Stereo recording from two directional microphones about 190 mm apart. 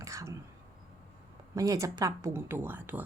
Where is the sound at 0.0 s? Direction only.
15° right (ahead or behind).